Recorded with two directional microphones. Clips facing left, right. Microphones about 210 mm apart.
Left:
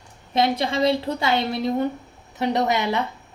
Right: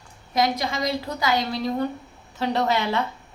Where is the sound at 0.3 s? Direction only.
30° left (ahead or behind).